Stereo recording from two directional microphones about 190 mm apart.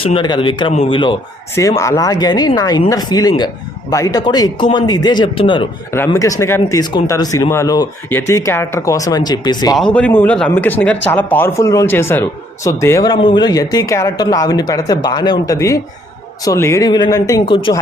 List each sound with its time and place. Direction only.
0.0 s a man's voice: 25° left (ahead or behind)
9.7 s a man's voice: 5° left (ahead or behind); by 17.7 s 25° left (ahead or behind)